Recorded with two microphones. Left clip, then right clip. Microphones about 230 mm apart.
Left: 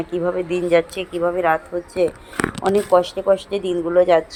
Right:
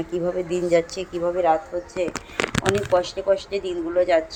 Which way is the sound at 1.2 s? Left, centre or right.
Left.